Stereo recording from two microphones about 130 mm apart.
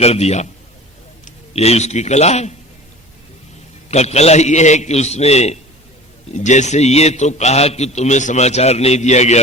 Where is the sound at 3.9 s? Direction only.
55° left (ahead or behind).